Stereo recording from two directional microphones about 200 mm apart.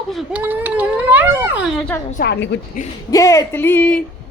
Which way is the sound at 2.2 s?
55° left (ahead or behind).